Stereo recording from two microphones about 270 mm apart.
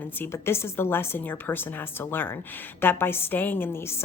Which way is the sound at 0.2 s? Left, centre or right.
Centre.